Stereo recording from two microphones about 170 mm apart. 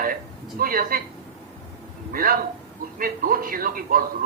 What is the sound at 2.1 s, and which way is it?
A man's voice, 60° right (ahead or behind).